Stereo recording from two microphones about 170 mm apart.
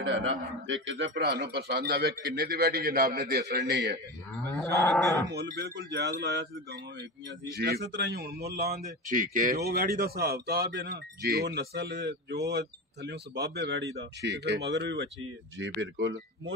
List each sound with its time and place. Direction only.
0.7 s a man's voice: 90° right; by 4.0 s 70° right (ahead or behind)
4.5 s livestock: 10° left (ahead or behind)
5.3 s a man's voice: 75° right (ahead or behind)
7.0 s a man's voice: 70° right (ahead or behind)
9.1 s a man's voice: 50° right (ahead or behind); by 12.4 s 90° right
12.4 s speech: 75° right (ahead or behind); by 16.5 s 90° right